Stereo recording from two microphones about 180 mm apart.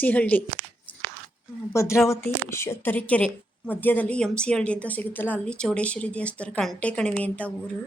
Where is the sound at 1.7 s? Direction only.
15° left (ahead or behind).